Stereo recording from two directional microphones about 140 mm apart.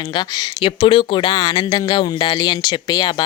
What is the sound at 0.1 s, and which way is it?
Speech, 30° left (ahead or behind).